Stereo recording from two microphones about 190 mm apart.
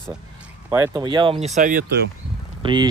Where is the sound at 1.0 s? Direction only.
25° right (ahead or behind); by 2.1 s 55° right (ahead or behind).